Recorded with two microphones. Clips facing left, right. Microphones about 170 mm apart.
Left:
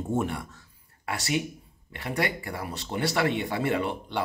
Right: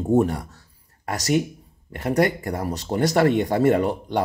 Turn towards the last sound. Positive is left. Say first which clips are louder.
# right 7 dB
turn(degrees=-45)  # may be behind; listen again after turning